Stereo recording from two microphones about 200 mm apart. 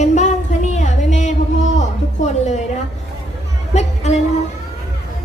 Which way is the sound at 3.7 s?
35° left (ahead or behind).